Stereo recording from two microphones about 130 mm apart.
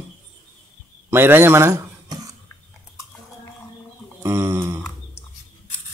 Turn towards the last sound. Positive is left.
turn(degrees=-20)  # may be behind; listen again after turning